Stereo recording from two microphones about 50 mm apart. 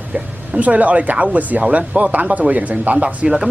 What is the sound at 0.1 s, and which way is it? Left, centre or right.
Speech, right.